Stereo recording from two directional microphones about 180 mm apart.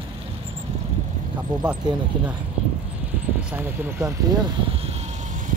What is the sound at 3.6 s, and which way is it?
Speech, 10° right (ahead or behind).